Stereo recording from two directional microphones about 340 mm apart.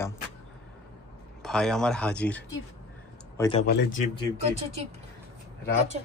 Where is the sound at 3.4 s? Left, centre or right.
Centre.